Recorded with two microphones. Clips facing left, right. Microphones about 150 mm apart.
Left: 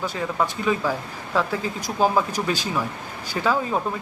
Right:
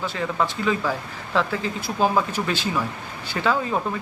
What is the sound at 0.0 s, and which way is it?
Speech, 15° left (ahead or behind).